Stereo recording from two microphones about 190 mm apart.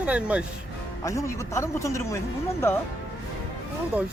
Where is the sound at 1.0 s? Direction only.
15° left (ahead or behind).